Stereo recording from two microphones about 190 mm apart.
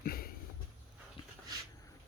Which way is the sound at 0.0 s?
50° left (ahead or behind).